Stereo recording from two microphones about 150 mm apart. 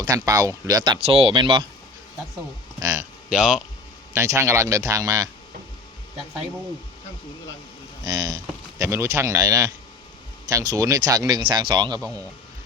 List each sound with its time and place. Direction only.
0.0 s speech: 25° right (ahead or behind)
1.0 s speech: 40° right (ahead or behind)
2.8 s speech: 20° right (ahead or behind)
3.2 s speech: 5° right (ahead or behind)
4.1 s speech: 20° right (ahead or behind)
8.0 s speech: 25° right (ahead or behind)